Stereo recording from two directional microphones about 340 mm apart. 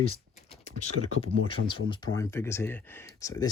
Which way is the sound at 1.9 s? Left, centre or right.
Centre.